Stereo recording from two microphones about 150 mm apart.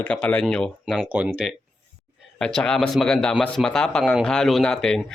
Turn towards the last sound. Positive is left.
turn(degrees=5)  # may be behind; listen again after turning